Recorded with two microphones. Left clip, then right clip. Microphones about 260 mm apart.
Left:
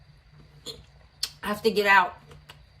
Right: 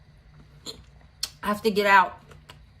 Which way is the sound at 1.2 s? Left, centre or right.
Centre.